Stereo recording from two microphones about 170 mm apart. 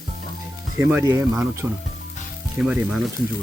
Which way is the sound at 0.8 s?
10° right (ahead or behind).